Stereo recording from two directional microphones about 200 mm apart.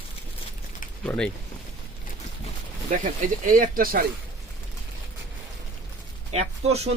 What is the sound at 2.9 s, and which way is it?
Speech, 40° right (ahead or behind).